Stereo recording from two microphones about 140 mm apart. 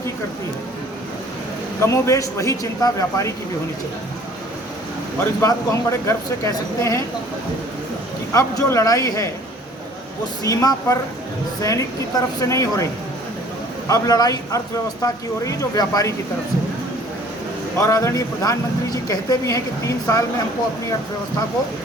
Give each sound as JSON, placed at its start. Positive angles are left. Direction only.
{"t": 1.8, "sound": "speech", "side_deg": 20}
{"t": 5.4, "sound": "speech", "side_deg": 20}
{"t": 8.3, "sound": "speech", "side_deg": 25}
{"t": 10.4, "sound": "speech", "side_deg": 25}
{"t": 17.7, "sound": "speech", "side_deg": 25}